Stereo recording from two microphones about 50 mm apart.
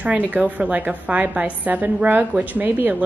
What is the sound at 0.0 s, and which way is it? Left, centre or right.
Speech, right.